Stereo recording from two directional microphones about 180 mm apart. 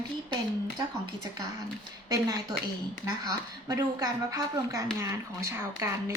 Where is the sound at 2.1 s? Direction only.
20° right (ahead or behind).